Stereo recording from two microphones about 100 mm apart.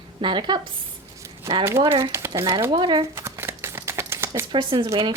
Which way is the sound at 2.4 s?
30° right (ahead or behind).